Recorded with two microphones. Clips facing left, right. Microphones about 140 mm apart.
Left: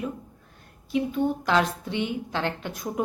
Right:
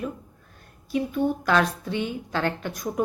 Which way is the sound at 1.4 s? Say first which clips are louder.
Right 1 dB; 20° left (ahead or behind).